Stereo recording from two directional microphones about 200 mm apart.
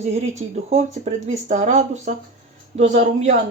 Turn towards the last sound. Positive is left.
turn(degrees=-35)  # may be behind; listen again after turning